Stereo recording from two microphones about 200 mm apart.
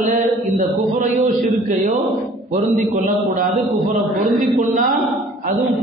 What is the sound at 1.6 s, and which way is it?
Speech, 40° right (ahead or behind).